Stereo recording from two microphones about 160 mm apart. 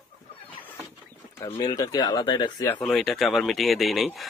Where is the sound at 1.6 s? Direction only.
25° left (ahead or behind).